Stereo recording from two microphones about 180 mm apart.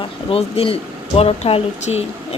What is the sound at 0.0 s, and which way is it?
Speech, 30° left (ahead or behind).